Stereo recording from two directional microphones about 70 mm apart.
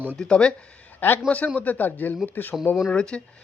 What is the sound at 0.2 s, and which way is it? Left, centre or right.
Speech, centre.